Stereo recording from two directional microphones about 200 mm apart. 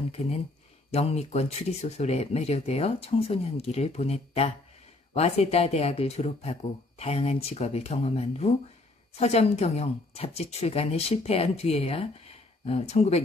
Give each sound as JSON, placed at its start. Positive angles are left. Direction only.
{"t": 0.9, "sound": "speech", "side_deg": 30}